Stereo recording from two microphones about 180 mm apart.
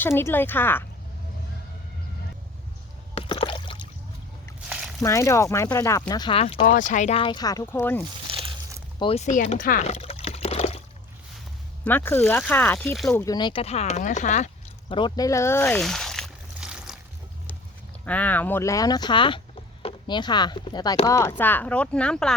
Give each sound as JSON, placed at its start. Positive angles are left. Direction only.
{"t": 0.0, "sound": "speech", "side_deg": 15}
{"t": 3.2, "sound": "a sound", "side_deg": 30}
{"t": 4.7, "sound": "a sound", "side_deg": -5}
{"t": 5.0, "sound": "speech", "side_deg": 15}
{"t": 6.7, "sound": "speech", "side_deg": 45}
{"t": 8.3, "sound": "crumpling", "side_deg": -30}
{"t": 9.0, "sound": "liquid", "side_deg": 35}
{"t": 11.9, "sound": "speech", "side_deg": 10}
{"t": 13.1, "sound": "speech", "side_deg": 15}
{"t": 14.8, "sound": "speech", "side_deg": 25}
{"t": 15.8, "sound": "a sound", "side_deg": 0}
{"t": 18.0, "sound": "speech", "side_deg": 10}
{"t": 21.1, "sound": "speech", "side_deg": 15}